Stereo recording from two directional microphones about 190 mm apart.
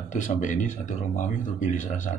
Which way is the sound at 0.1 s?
40° left (ahead or behind).